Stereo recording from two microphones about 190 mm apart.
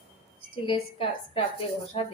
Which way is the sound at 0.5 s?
25° left (ahead or behind).